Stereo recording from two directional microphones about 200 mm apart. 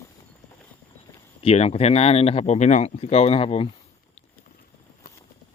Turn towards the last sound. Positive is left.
turn(degrees=30)  # may be behind; listen again after turning